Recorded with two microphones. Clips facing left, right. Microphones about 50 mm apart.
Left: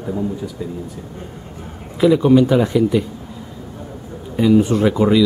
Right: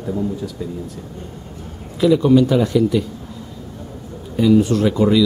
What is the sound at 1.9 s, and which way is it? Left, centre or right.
Speech, centre.